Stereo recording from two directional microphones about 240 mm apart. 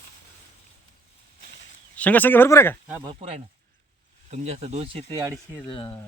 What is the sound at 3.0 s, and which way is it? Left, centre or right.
Speech, right.